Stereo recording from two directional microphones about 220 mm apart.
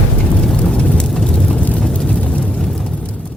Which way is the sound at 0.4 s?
5° left (ahead or behind).